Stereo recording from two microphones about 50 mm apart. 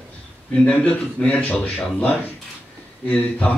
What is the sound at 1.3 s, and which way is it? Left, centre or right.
A man's voice, left.